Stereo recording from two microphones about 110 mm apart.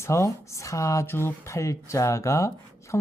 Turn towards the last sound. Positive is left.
turn(degrees=20)  # may be behind; listen again after turning